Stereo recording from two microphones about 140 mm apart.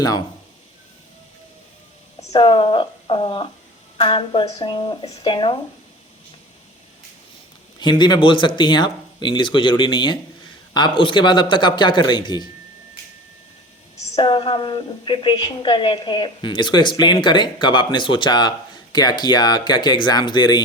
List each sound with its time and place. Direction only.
2.3 s a woman's voice: 35° left (ahead or behind)
7.8 s a woman's voice: 30° left (ahead or behind)
14.2 s a woman's voice: 35° left (ahead or behind)